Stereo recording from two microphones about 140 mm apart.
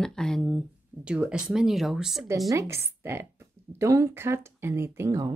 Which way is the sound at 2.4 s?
20° right (ahead or behind).